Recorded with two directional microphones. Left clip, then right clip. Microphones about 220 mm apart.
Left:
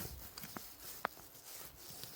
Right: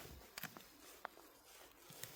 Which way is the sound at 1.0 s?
45° left (ahead or behind).